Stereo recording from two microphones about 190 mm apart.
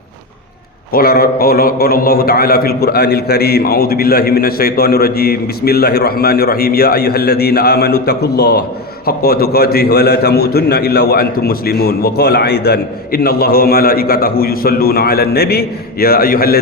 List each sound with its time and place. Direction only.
0.9 s a man's voice: 50° left (ahead or behind)